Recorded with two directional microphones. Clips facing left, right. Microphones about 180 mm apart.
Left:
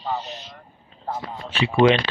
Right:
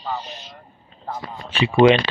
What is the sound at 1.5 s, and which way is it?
Speech, 15° right (ahead or behind).